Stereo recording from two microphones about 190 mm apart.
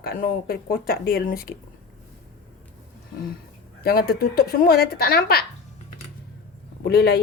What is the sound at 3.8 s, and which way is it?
Speech, 55° left (ahead or behind).